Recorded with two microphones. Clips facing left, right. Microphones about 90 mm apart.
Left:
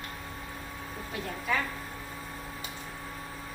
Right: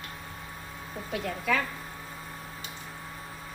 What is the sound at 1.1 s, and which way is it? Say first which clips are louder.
Speech: right 3 dB; 90° right.